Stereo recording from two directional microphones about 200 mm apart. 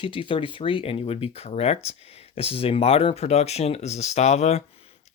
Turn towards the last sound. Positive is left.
turn(degrees=30)  # may be behind; listen again after turning